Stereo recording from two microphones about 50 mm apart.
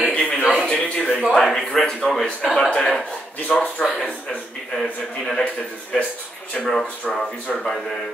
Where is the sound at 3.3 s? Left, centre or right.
Left.